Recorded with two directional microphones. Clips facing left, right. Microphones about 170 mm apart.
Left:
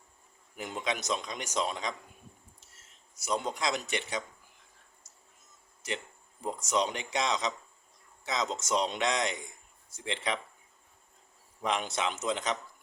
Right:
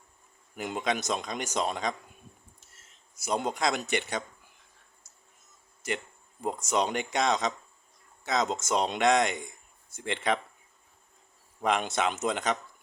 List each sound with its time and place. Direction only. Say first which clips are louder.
0.5 s a man's voice: right 4 dB; 50° right (ahead or behind)
3.2 s a man's voice: right 3 dB; 50° right (ahead or behind)
6.4 s a man's voice: right 2 dB; 50° right (ahead or behind)
11.6 s a man's voice: right 4 dB; 55° right (ahead or behind)